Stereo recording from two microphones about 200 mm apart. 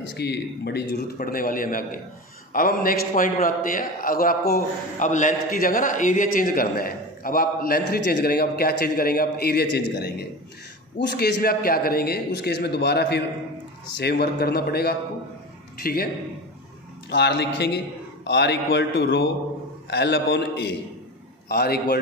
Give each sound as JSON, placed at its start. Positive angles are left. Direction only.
{"t": 0.1, "sound": "a man's voice", "side_deg": 55}
{"t": 17.1, "sound": "a man's voice", "side_deg": 60}